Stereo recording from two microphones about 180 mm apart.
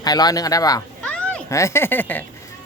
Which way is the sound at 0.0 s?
20° left (ahead or behind).